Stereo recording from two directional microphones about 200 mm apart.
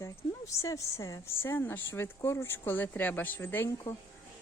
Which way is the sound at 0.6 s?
15° left (ahead or behind).